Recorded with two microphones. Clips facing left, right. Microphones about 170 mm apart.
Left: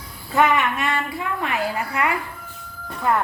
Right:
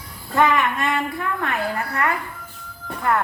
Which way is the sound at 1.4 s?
10° left (ahead or behind).